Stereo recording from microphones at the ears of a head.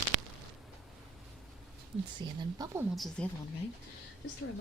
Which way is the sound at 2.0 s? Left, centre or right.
Right.